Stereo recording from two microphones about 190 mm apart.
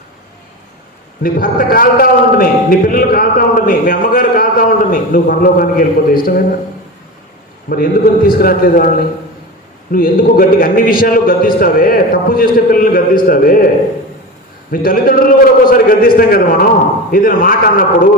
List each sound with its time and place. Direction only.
1.2 s a man's voice: 50° left (ahead or behind)
7.7 s a man's voice: 50° left (ahead or behind)
9.9 s a man's voice: 50° left (ahead or behind)
14.8 s a man's voice: 50° left (ahead or behind)